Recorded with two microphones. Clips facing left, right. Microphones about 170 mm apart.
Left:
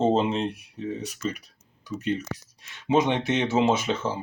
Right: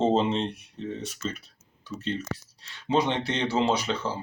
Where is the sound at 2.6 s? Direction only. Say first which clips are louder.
Left 3 dB; 20° left (ahead or behind).